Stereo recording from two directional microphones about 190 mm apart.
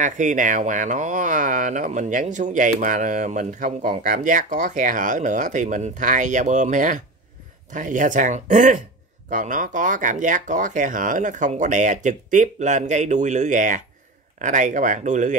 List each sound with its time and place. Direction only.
0.0 s speech: 40° right (ahead or behind)